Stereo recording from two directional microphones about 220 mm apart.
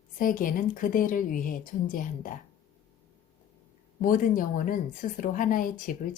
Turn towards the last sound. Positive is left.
turn(degrees=40)  # may be behind; listen again after turning